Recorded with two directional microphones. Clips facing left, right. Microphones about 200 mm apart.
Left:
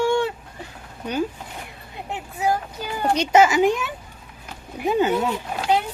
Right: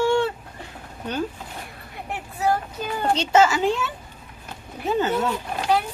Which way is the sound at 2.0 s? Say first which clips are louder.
Even; 15° left (ahead or behind).